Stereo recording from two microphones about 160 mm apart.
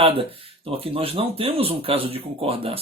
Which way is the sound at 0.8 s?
35° right (ahead or behind).